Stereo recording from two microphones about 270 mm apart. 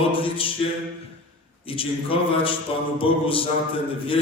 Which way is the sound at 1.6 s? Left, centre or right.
Centre.